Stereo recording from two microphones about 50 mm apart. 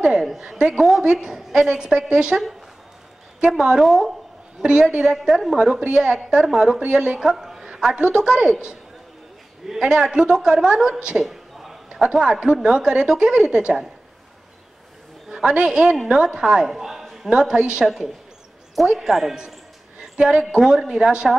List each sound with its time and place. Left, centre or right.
0.0 s a woman's voice: centre
0.7 s a woman's voice: centre
3.4 s a woman's voice: centre
4.6 s a woman's voice: centre
5.1 s a woman's voice: centre
11.2 s a woman's voice: centre
15.2 s a woman's voice: centre
17.0 s a sound: centre
17.3 s a woman's voice: centre
20.0 s a sound: centre
20.4 s a woman's voice: centre